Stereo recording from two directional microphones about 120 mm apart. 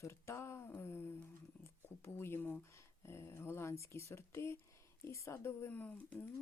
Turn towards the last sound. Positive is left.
turn(degrees=15)  # may be behind; listen again after turning